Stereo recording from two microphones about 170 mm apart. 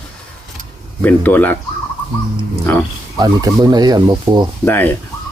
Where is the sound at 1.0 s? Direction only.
10° left (ahead or behind).